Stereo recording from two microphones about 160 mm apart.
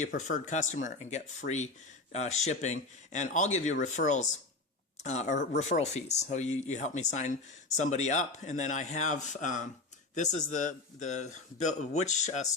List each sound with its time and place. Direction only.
0.0 s speech: 55° left (ahead or behind)